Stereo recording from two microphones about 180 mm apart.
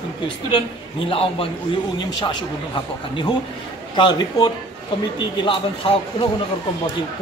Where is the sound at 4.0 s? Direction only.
25° left (ahead or behind).